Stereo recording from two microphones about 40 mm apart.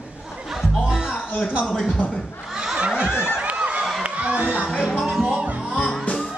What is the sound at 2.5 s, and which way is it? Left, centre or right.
Crowd, centre.